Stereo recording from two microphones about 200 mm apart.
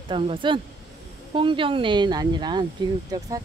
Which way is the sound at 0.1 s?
25° right (ahead or behind).